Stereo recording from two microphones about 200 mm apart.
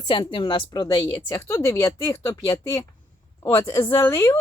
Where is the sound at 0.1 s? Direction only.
25° left (ahead or behind).